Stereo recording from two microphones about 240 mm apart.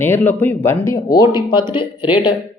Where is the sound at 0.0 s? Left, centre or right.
Centre.